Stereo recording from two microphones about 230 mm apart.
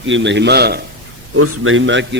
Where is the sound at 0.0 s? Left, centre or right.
Right.